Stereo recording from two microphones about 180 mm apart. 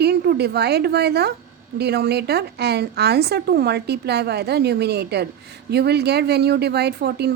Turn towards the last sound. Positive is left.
turn(degrees=-65)  # may be behind; listen again after turning